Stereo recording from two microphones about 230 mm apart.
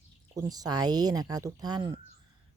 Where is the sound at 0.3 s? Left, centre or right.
Centre.